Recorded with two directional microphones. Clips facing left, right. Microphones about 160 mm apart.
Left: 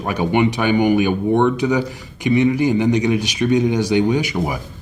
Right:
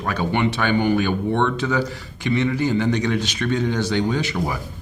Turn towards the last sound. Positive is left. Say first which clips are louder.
# left 5 dB
turn(degrees=15)  # may be behind; listen again after turning